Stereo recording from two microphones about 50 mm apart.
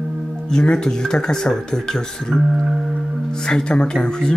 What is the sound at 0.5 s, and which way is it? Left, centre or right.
Speech, centre.